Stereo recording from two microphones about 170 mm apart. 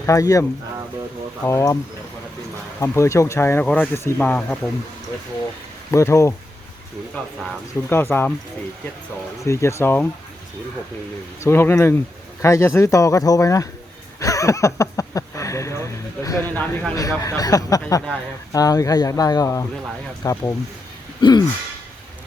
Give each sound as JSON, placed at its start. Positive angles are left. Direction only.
{"t": 0.0, "sound": "speech", "side_deg": 20}
{"t": 1.5, "sound": "speech", "side_deg": 15}
{"t": 2.8, "sound": "speech", "side_deg": 15}
{"t": 5.9, "sound": "speech", "side_deg": 15}
{"t": 7.9, "sound": "speech", "side_deg": 10}
{"t": 9.4, "sound": "speech", "side_deg": 15}
{"t": 11.3, "sound": "speech", "side_deg": 15}
{"t": 14.2, "sound": "a sound", "side_deg": 20}
{"t": 16.6, "sound": "speech", "side_deg": 10}
{"t": 21.2, "sound": "a sound", "side_deg": 25}